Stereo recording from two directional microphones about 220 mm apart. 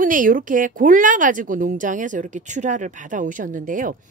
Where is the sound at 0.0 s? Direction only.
40° right (ahead or behind).